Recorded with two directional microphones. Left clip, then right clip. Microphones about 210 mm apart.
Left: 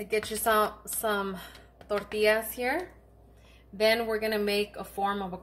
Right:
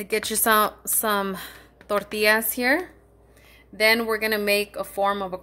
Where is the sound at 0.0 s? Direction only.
55° right (ahead or behind).